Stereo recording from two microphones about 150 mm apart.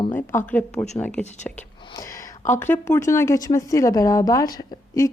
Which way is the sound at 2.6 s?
15° left (ahead or behind).